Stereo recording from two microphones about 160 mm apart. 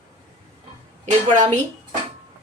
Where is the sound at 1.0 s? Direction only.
50° right (ahead or behind).